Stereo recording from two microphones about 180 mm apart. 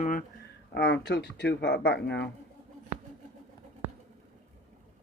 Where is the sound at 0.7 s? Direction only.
70° left (ahead or behind).